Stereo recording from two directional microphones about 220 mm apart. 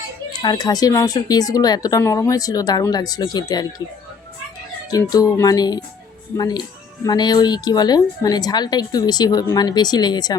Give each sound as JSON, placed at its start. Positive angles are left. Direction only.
{"t": 0.4, "sound": "a woman's voice", "side_deg": 20}
{"t": 4.9, "sound": "a woman's voice", "side_deg": 15}